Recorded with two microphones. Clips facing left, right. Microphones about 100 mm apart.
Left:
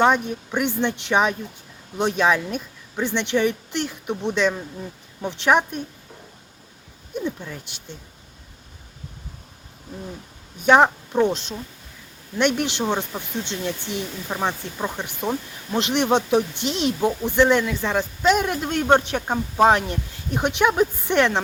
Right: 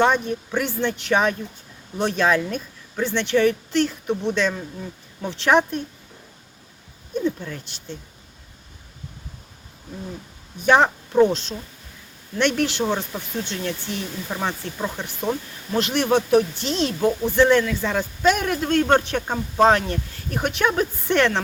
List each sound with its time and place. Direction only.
0.0 s speech: 15° left (ahead or behind)
7.4 s speech: 10° left (ahead or behind)
10.7 s speech: 15° left (ahead or behind)